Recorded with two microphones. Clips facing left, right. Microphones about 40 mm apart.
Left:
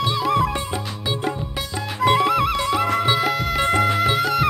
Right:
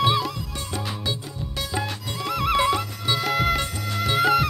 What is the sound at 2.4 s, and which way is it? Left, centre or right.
Music, centre.